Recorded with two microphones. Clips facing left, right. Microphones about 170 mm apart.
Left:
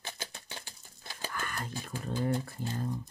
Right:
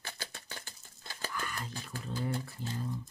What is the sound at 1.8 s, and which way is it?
Speech, 50° left (ahead or behind).